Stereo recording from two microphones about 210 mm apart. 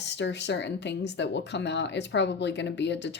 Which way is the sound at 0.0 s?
55° left (ahead or behind).